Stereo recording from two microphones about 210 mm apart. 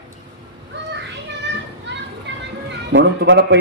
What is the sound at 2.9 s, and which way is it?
Speech, 60° right (ahead or behind).